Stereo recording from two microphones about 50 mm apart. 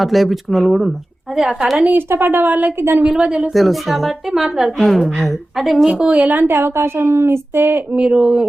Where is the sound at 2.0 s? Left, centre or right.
Right.